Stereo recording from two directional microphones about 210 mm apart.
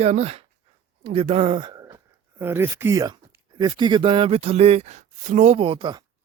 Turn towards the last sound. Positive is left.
turn(degrees=-20)  # may be behind; listen again after turning